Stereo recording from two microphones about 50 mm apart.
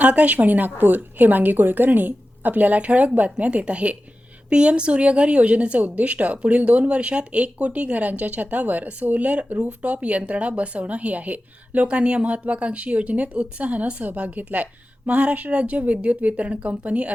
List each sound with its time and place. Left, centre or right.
0.0 s a woman's voice: right